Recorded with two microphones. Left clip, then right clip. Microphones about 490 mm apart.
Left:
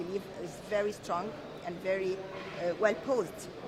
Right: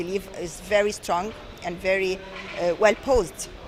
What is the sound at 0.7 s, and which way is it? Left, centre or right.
Speech, right.